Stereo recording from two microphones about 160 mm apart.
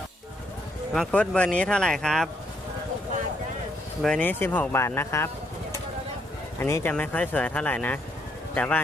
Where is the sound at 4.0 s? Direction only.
5° left (ahead or behind).